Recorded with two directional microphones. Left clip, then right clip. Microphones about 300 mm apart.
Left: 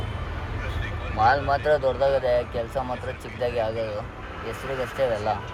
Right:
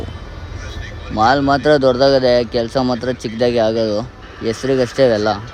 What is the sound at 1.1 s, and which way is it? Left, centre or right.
Speech, centre.